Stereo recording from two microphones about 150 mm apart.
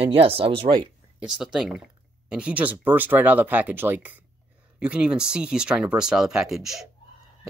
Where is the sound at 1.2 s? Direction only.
5° right (ahead or behind).